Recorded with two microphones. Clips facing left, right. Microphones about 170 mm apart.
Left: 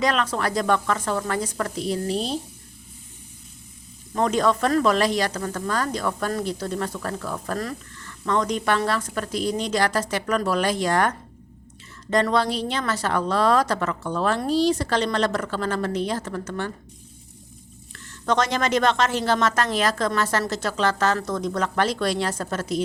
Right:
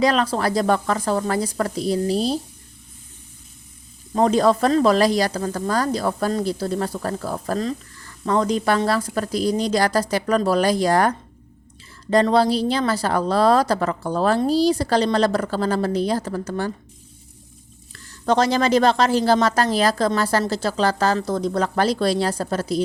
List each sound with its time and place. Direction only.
0.0 s a woman's voice: 35° right (ahead or behind)
4.1 s a woman's voice: 35° right (ahead or behind)
12.1 s a woman's voice: 35° right (ahead or behind)
17.9 s a woman's voice: 35° right (ahead or behind)